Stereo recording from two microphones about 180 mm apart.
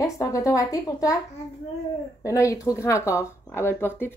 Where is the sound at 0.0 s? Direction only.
20° left (ahead or behind).